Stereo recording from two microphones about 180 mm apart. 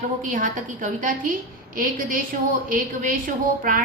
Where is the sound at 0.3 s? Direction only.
50° right (ahead or behind).